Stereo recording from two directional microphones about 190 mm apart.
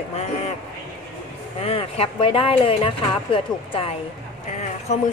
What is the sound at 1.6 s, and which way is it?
Speech, 30° left (ahead or behind).